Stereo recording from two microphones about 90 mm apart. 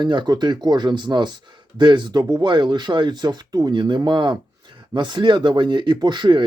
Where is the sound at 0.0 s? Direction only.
55° right (ahead or behind).